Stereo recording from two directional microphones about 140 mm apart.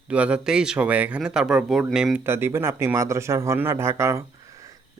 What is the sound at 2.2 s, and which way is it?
Speech, 15° right (ahead or behind).